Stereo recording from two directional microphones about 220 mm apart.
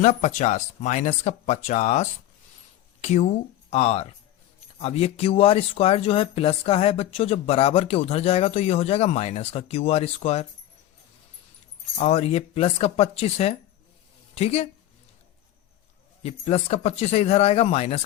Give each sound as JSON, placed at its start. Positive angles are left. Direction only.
{"t": 0.0, "sound": "speech", "side_deg": 30}
{"t": 11.9, "sound": "speech", "side_deg": 30}
{"t": 16.2, "sound": "speech", "side_deg": 30}